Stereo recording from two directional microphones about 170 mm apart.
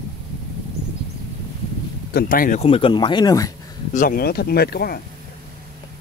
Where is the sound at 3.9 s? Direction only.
50° left (ahead or behind).